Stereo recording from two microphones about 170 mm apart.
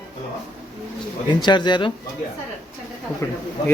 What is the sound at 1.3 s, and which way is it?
Speech, 25° left (ahead or behind).